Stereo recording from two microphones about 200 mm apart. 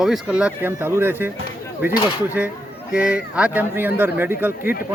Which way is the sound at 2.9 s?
5° right (ahead or behind).